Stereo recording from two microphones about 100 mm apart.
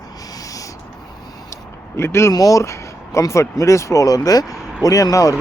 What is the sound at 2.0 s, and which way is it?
Speech, 25° left (ahead or behind).